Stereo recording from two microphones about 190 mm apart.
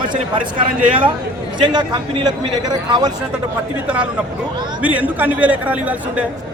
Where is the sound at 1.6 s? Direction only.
20° right (ahead or behind).